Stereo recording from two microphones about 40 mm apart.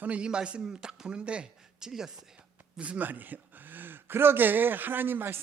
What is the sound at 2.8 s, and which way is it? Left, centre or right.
Speech, right.